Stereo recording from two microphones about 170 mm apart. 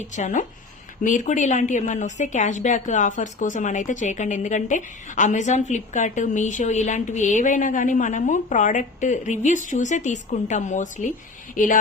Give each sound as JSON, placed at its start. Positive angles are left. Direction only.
{"t": 0.2, "sound": "a woman's voice", "side_deg": 45}